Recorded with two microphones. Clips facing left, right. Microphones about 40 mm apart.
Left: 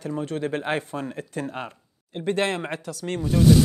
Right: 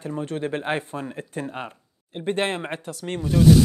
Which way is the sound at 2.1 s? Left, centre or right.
Right.